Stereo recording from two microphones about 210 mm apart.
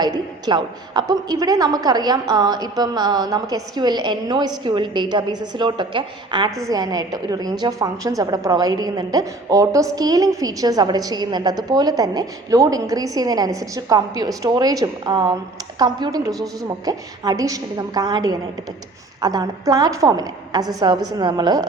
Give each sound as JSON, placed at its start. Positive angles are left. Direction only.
{"t": 0.0, "sound": "a woman's voice", "side_deg": -20}